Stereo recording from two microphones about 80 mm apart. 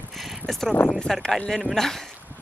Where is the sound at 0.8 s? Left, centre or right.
Centre.